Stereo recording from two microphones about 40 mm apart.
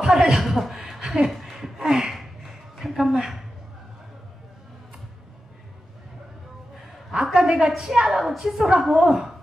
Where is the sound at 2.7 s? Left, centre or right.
Centre.